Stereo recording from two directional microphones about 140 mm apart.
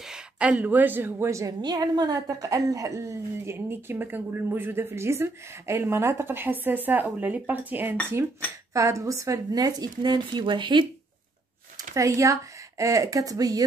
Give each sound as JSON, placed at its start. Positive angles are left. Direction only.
{"t": 0.0, "sound": "a woman's voice", "side_deg": -5}
{"t": 8.7, "sound": "a woman's voice", "side_deg": -25}
{"t": 11.9, "sound": "a woman's voice", "side_deg": -20}